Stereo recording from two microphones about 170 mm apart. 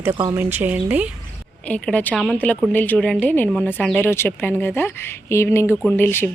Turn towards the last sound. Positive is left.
turn(degrees=15)  # may be behind; listen again after turning